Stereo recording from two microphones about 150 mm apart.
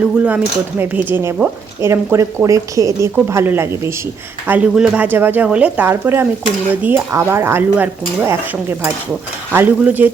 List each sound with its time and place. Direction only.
0.2 s speech: 10° right (ahead or behind)
9.5 s speech: 15° right (ahead or behind)